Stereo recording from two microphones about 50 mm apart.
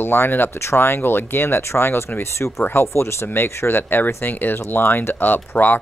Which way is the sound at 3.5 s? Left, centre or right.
Left.